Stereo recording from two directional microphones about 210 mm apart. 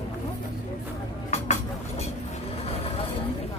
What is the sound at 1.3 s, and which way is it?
Vehicle, 35° left (ahead or behind).